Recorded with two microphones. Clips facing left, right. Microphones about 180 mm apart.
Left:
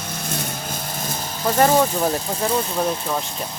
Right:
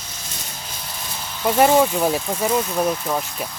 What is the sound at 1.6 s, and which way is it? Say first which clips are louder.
Speech: right 1 dB; 10° right (ahead or behind).